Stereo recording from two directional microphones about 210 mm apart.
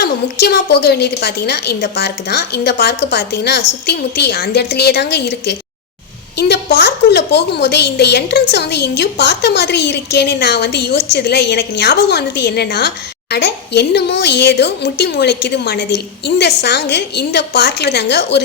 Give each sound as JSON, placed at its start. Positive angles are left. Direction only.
{"t": 0.0, "sound": "a woman's voice", "side_deg": 50}